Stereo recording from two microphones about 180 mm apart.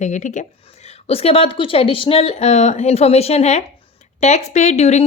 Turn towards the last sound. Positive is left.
turn(degrees=40)  # may be behind; listen again after turning